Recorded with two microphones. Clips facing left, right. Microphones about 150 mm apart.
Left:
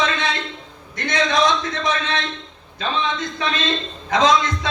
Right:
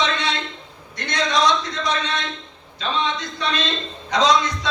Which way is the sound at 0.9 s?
50° left (ahead or behind).